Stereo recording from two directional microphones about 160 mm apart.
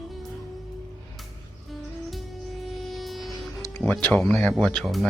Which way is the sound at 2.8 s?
Centre (ahead or behind).